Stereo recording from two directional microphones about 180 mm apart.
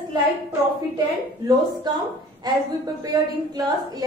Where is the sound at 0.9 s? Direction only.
20° right (ahead or behind).